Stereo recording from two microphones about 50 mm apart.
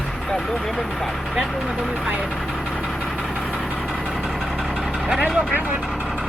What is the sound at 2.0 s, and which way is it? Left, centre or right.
Speech, centre.